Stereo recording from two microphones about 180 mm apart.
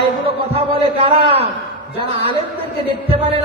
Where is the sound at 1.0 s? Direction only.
30° right (ahead or behind).